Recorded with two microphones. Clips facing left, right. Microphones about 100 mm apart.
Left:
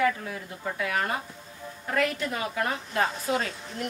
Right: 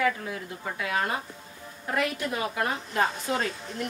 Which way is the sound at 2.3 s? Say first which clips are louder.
Right 1 dB; 25° right (ahead or behind).